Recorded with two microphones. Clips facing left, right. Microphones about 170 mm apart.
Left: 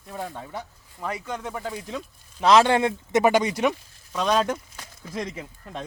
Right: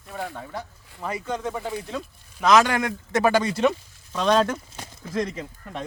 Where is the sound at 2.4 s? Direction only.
30° left (ahead or behind); by 5.4 s 10° left (ahead or behind).